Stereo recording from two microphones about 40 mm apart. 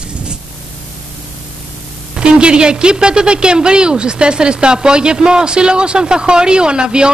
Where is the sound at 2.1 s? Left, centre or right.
Right.